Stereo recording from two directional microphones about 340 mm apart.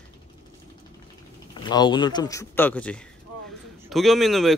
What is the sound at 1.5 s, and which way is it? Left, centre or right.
Speech, centre.